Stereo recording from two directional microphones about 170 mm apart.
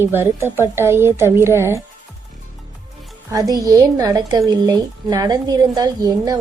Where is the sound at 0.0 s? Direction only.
15° right (ahead or behind).